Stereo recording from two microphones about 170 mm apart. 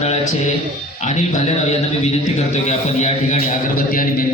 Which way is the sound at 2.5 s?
40° left (ahead or behind).